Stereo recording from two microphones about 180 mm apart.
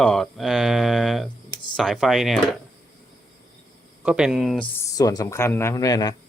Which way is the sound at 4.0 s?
5° right (ahead or behind).